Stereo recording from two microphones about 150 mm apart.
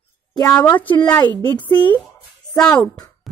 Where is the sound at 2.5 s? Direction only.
5° left (ahead or behind).